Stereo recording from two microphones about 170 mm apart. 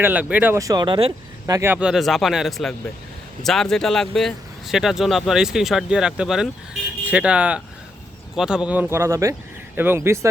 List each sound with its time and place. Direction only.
0.0 s speech: 10° right (ahead or behind); by 1.1 s 30° right (ahead or behind)
1.5 s speech: 15° right (ahead or behind)